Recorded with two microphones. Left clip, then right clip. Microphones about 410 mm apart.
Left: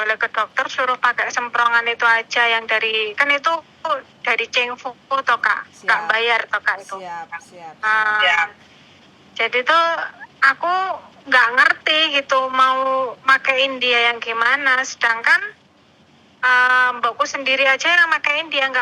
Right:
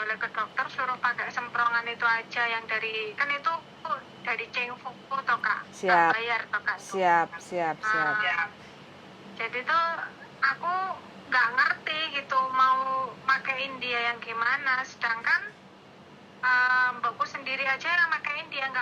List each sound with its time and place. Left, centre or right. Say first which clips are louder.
0.0 s speech: left 11 dB; left
7.0 s speech: right 7 dB; right
7.8 s speech: left 13 dB; left
16.4 s speech: left 9 dB; left